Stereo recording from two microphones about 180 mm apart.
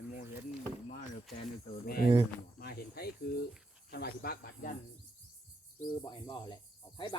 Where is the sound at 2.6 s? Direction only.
60° left (ahead or behind).